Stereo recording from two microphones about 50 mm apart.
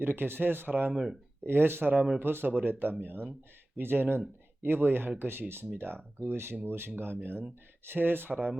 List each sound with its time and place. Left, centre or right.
0.0 s speech: right
1.5 s speech: right